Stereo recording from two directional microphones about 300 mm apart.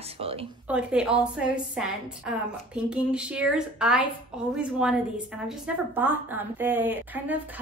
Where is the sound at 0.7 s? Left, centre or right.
Centre.